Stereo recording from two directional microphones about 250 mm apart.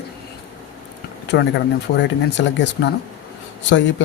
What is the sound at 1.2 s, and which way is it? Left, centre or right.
Speech, left.